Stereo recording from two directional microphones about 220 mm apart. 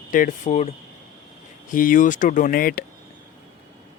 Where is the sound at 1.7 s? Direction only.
35° left (ahead or behind).